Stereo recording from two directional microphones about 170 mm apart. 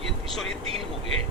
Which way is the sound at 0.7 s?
35° right (ahead or behind).